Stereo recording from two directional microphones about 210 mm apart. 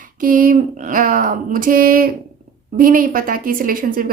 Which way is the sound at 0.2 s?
40° right (ahead or behind).